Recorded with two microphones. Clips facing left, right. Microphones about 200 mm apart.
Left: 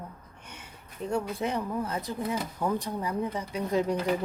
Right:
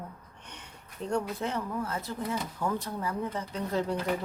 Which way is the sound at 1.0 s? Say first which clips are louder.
Left 1 dB; 5° left (ahead or behind).